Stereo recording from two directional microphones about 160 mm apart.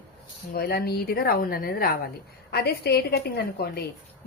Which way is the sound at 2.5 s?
90° left.